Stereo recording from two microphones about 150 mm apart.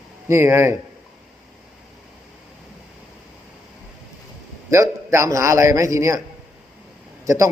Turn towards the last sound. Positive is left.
turn(degrees=-20)  # may be behind; listen again after turning